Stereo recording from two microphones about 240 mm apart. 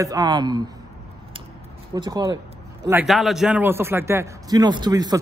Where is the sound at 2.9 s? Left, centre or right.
Centre.